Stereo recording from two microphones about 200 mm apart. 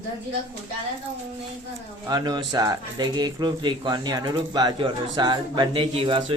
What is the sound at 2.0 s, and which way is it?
Speech, 20° right (ahead or behind).